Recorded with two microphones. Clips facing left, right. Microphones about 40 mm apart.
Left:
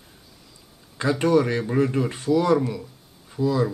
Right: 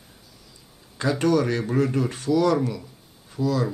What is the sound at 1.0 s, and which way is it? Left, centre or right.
Speech, centre.